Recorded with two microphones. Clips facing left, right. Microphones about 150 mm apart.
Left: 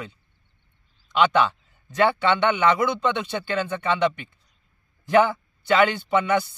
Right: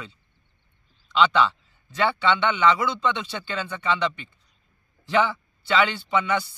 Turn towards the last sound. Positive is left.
turn(degrees=50)  # may be behind; listen again after turning